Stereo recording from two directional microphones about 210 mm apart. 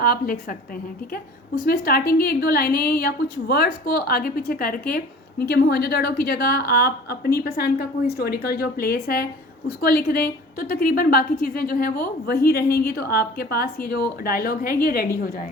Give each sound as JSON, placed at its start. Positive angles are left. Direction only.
{"t": 0.0, "sound": "a woman's voice", "side_deg": 45}
{"t": 1.6, "sound": "a woman's voice", "side_deg": 45}